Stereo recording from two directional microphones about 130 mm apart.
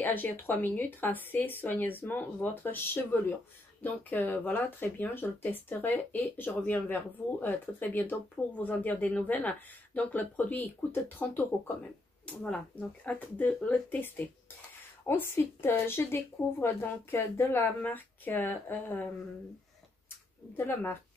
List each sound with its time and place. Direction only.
0.0 s speech: 15° left (ahead or behind)
13.0 s speech: 10° left (ahead or behind)
20.5 s speech: 15° left (ahead or behind)